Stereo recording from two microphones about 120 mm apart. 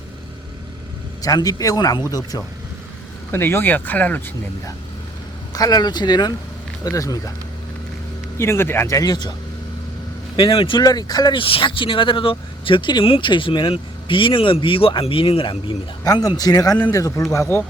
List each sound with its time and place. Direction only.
1.2 s speech: 30° left (ahead or behind)
3.3 s speech: 20° left (ahead or behind)
5.5 s speech: 35° left (ahead or behind)
8.4 s speech: 20° left (ahead or behind); by 9.3 s 35° left (ahead or behind)
10.3 s speech: 45° left (ahead or behind)
11.3 s speech: 50° left (ahead or behind)
16.0 s speech: 30° left (ahead or behind)